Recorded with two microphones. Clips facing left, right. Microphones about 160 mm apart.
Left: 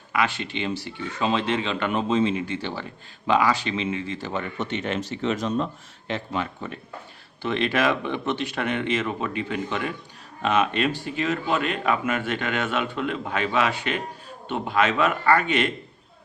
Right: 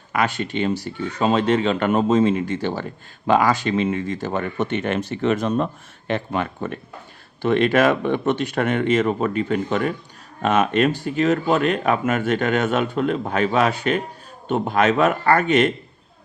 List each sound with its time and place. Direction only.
0.1 s speech: 45° right (ahead or behind)